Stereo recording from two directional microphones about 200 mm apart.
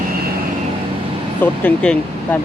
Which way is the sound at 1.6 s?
5° left (ahead or behind).